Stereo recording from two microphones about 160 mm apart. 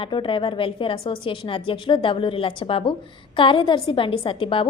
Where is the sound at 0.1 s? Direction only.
30° left (ahead or behind).